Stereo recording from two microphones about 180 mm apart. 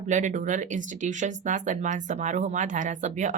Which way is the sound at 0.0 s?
40° right (ahead or behind).